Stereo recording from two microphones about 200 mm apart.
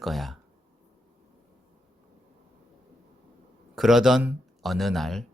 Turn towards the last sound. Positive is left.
turn(degrees=0)  # may be behind; listen again after turning